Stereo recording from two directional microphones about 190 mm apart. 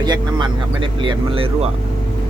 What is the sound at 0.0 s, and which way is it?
Speech, 20° right (ahead or behind).